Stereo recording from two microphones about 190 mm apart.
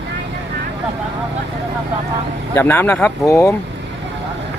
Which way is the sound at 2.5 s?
10° left (ahead or behind).